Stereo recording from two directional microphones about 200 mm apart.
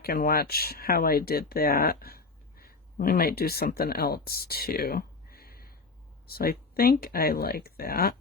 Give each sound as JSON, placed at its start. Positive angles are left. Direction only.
{"t": 0.0, "sound": "speech", "side_deg": 50}